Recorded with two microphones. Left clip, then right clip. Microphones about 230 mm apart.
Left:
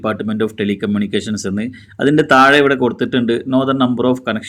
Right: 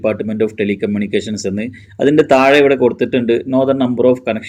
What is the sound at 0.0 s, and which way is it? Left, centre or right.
Speech, centre.